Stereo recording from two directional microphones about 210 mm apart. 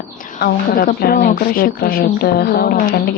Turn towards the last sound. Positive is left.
turn(degrees=45)  # may be behind; listen again after turning